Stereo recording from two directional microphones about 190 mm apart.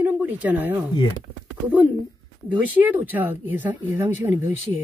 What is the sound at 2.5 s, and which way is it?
Speech, 10° right (ahead or behind).